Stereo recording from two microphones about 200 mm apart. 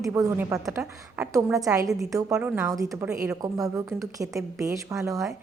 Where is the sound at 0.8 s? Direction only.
5° right (ahead or behind).